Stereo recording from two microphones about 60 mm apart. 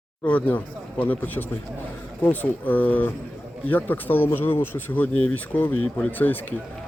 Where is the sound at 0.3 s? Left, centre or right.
Left.